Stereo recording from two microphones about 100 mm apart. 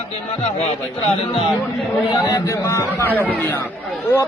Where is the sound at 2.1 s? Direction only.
40° left (ahead or behind).